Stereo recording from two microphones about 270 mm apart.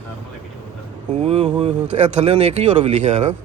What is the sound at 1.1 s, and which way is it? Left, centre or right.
Speech, right.